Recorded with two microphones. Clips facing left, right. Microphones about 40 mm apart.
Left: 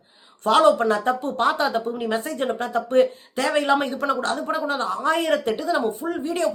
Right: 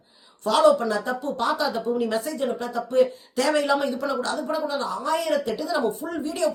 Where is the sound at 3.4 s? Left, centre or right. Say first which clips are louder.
Left 1 dB; left.